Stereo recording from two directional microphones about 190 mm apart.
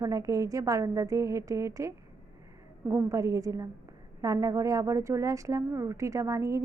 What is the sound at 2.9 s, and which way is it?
A woman's voice, 15° right (ahead or behind).